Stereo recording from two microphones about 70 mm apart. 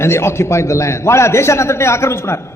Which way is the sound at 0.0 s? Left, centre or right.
Left.